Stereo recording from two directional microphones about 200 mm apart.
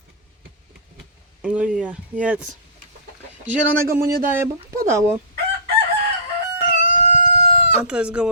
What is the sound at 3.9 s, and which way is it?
Speech, 45° right (ahead or behind).